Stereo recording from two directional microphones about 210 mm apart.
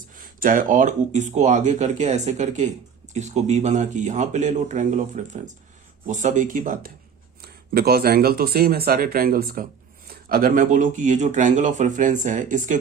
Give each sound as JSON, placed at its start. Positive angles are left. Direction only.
{"t": 0.2, "sound": "speech", "side_deg": -40}